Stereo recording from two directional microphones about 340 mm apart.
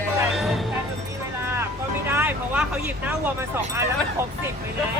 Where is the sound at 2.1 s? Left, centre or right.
Centre.